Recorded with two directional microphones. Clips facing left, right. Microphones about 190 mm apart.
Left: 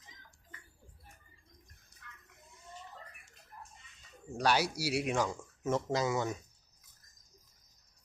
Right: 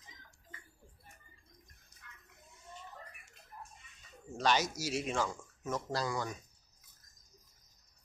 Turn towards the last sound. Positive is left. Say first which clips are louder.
# left 4 dB
turn(degrees=25)  # may be behind; listen again after turning